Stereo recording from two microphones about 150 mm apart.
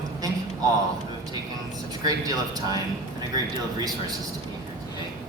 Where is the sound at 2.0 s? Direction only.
25° right (ahead or behind).